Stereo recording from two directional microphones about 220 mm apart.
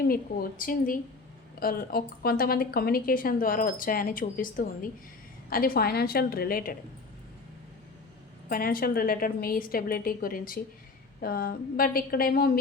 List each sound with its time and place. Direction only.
0.1 s a woman's voice: 40° left (ahead or behind)
8.4 s a woman's voice: 40° left (ahead or behind)